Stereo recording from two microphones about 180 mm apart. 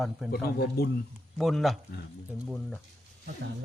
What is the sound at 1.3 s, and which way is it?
Speech, centre (ahead or behind).